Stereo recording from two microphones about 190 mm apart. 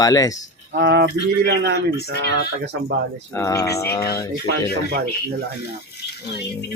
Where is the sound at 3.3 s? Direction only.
15° left (ahead or behind).